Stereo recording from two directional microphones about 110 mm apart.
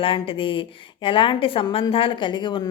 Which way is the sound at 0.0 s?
55° left (ahead or behind).